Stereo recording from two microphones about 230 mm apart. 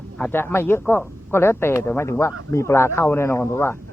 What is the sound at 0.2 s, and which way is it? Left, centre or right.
A man's voice, centre.